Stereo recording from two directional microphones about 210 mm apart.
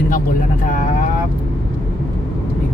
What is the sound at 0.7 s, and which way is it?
Vehicle, 40° left (ahead or behind).